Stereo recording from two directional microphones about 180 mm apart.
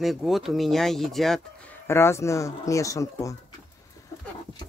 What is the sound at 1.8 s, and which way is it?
Speech, 15° left (ahead or behind).